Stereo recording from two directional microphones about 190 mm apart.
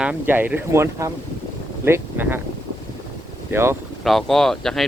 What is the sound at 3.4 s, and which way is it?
Speech, 10° right (ahead or behind).